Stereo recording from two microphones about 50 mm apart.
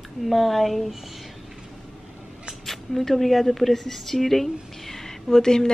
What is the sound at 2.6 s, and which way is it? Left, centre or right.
A woman's voice, centre.